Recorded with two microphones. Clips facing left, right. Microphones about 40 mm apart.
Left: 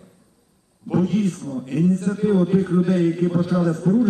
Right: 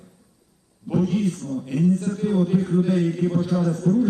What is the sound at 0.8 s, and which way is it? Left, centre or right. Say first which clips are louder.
A man's voice: left 2 dB; centre.